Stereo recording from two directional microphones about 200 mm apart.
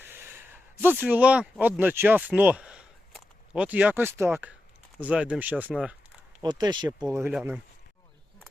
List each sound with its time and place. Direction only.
0.0 s speech: 10° right (ahead or behind)
6.4 s speech: 20° right (ahead or behind)